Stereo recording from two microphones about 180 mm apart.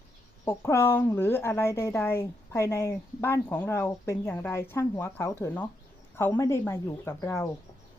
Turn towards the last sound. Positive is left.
turn(degrees=15)  # may be behind; listen again after turning